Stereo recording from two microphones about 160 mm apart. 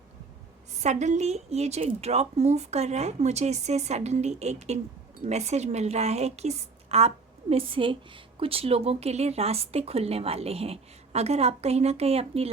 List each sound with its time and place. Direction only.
0.8 s a woman's voice: 45° right (ahead or behind)